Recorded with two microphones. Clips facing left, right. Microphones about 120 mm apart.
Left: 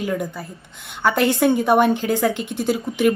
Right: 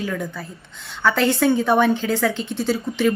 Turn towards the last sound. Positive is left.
turn(degrees=15)  # may be behind; listen again after turning